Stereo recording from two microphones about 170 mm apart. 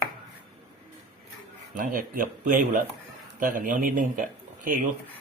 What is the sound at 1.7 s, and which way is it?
A man's voice, 50° right (ahead or behind).